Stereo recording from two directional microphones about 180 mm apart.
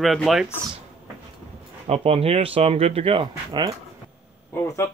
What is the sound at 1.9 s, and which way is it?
Speech, 35° right (ahead or behind).